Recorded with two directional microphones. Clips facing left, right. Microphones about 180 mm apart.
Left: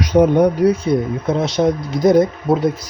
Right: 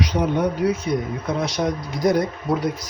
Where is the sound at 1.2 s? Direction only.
25° left (ahead or behind).